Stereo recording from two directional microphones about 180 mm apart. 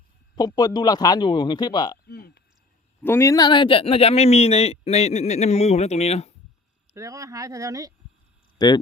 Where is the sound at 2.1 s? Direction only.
60° left (ahead or behind).